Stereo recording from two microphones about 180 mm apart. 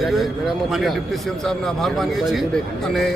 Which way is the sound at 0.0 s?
Centre (ahead or behind).